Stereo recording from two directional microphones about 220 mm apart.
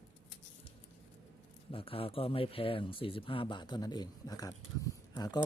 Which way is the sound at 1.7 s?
25° left (ahead or behind).